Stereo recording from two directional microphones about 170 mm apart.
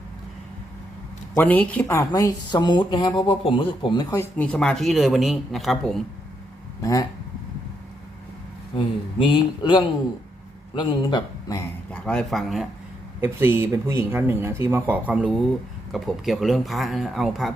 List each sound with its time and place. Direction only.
1.4 s a woman's voice: 10° left (ahead or behind)
8.7 s speech: 30° left (ahead or behind)
11.9 s speech: 5° left (ahead or behind)
13.2 s speech: 15° right (ahead or behind)